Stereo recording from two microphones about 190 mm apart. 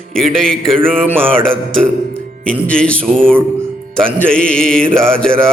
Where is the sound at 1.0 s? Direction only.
10° right (ahead or behind).